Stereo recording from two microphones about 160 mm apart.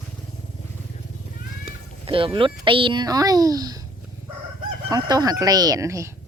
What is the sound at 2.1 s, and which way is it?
Speech, 35° right (ahead or behind).